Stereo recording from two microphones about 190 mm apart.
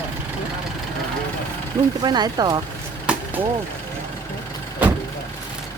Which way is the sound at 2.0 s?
20° right (ahead or behind).